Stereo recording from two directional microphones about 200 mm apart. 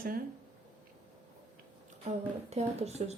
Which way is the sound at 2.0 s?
35° right (ahead or behind).